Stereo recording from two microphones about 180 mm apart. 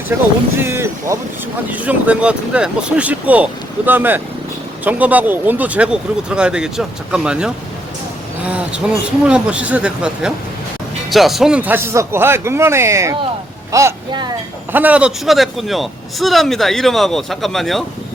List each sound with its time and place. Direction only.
0.5 s speech: 15° right (ahead or behind)
14.7 s speech: 10° right (ahead or behind)